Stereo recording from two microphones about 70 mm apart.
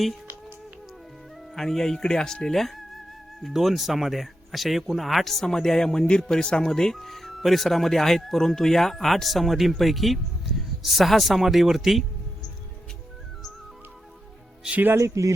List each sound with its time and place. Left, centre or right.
1.5 s speech: centre
14.9 s speech: right